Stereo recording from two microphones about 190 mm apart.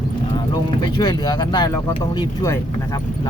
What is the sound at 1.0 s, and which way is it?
Speech, 20° left (ahead or behind).